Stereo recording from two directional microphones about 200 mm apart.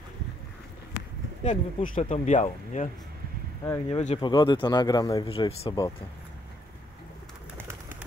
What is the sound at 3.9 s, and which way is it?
Speech, 30° left (ahead or behind).